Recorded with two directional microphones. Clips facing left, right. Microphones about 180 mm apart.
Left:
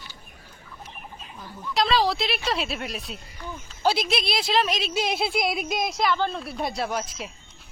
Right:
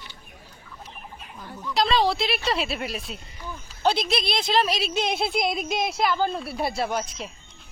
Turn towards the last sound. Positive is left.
turn(degrees=0)  # may be behind; listen again after turning